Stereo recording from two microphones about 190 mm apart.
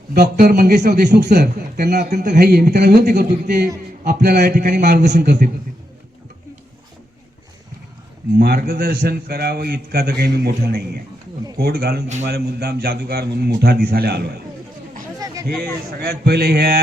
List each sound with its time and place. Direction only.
0.1 s a man's voice: 55° right (ahead or behind)
8.4 s a man's voice: 50° right (ahead or behind)
15.4 s a man's voice: 55° right (ahead or behind)